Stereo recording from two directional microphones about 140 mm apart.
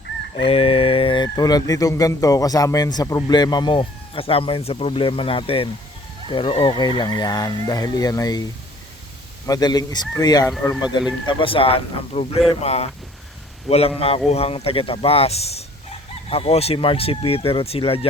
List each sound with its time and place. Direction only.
0.4 s speech: 45° left (ahead or behind); by 8.4 s 25° left (ahead or behind)
9.5 s speech: 30° left (ahead or behind)